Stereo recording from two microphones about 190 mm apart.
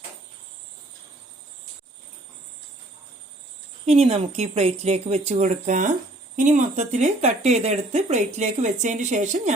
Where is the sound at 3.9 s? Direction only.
35° right (ahead or behind).